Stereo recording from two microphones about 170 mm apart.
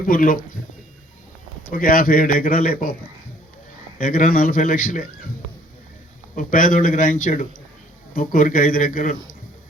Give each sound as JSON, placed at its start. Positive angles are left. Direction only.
{"t": 0.0, "sound": "a man's voice", "side_deg": 55}
{"t": 1.7, "sound": "a man's voice", "side_deg": 55}
{"t": 4.0, "sound": "a man's voice", "side_deg": 55}
{"t": 6.3, "sound": "a man's voice", "side_deg": 55}